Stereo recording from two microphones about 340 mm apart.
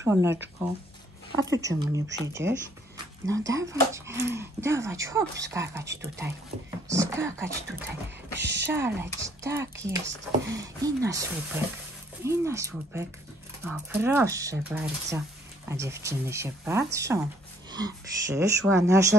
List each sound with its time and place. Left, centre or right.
0.0 s speech: centre
1.4 s speech: centre
2.4 s speech: right
3.3 s speech: centre
8.4 s speech: right
8.7 s speech: centre